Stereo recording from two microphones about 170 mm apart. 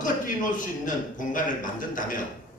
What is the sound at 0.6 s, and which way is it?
A man's voice, 50° left (ahead or behind).